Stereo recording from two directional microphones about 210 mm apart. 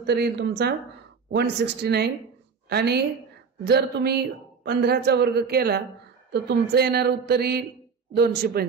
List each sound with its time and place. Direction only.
0.0 s a man's voice: 50° right (ahead or behind)